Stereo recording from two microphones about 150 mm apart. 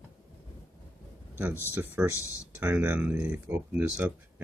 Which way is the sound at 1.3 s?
15° right (ahead or behind).